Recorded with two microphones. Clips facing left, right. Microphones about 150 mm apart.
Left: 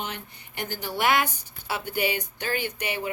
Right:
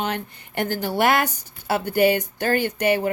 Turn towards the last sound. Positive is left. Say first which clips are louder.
# right 10 dB
turn(degrees=-45)  # may be behind; listen again after turning